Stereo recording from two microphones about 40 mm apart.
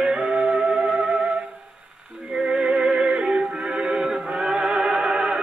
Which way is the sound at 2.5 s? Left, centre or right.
Right.